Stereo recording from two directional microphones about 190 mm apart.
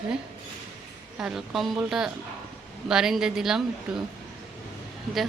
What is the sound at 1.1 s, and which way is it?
A woman's voice, 5° right (ahead or behind).